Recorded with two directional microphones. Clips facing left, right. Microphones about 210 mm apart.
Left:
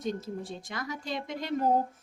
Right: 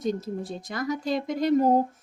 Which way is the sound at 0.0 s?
40° right (ahead or behind).